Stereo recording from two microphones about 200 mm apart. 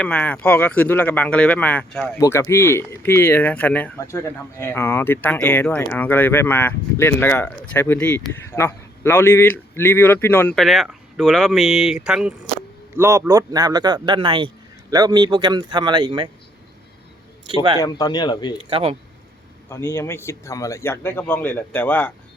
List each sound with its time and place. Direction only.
0.0 s speech: 10° left (ahead or behind)
13.0 s speech: 15° right (ahead or behind)
17.7 s speech: 20° left (ahead or behind)
18.7 s speech: 30° right (ahead or behind)
19.7 s speech: 15° left (ahead or behind)